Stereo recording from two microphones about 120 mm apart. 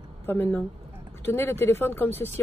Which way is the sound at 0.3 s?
15° left (ahead or behind).